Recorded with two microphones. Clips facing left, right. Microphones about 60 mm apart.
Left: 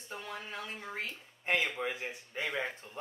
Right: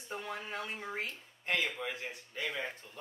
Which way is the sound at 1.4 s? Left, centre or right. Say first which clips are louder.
Left 2 dB; centre.